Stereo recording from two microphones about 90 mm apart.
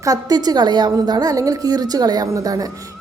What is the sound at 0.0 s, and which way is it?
A woman's voice, 45° right (ahead or behind).